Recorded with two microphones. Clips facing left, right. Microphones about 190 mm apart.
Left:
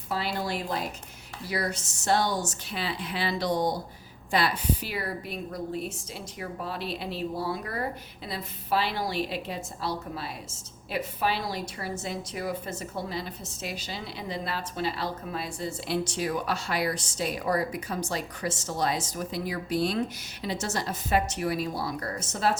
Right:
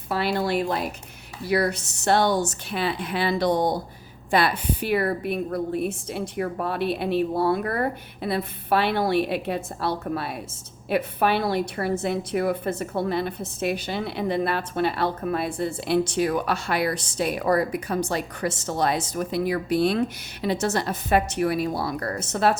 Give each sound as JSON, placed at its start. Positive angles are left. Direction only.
{"t": 0.1, "sound": "a woman's voice", "side_deg": -65}